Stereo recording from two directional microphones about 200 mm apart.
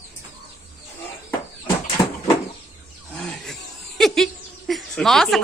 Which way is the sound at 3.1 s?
5° left (ahead or behind).